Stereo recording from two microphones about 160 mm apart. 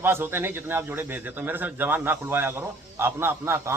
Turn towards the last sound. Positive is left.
turn(degrees=-15)  # may be behind; listen again after turning